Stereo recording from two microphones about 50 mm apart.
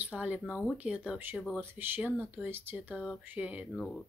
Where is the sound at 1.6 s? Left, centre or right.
Right.